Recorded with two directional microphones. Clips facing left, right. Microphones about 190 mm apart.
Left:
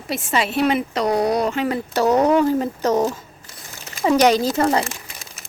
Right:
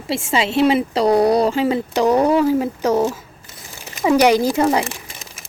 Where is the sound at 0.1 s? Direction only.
25° right (ahead or behind).